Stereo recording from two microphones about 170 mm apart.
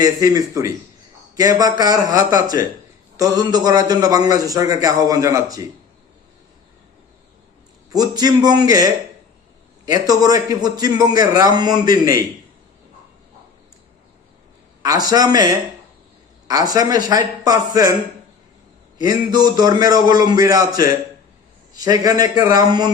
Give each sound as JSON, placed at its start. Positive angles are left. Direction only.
{"t": 0.0, "sound": "a man's voice", "side_deg": -20}
{"t": 7.9, "sound": "a man's voice", "side_deg": -20}
{"t": 14.8, "sound": "a man's voice", "side_deg": -20}
{"t": 19.3, "sound": "a man's voice", "side_deg": -25}